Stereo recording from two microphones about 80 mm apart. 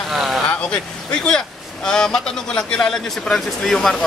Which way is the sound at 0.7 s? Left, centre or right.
Centre.